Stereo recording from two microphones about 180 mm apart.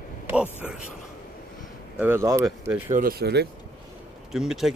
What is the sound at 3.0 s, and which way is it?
Speech, 55° right (ahead or behind).